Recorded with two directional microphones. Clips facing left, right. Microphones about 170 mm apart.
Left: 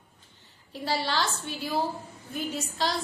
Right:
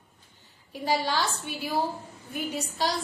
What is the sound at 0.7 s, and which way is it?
A woman's voice, 15° right (ahead or behind).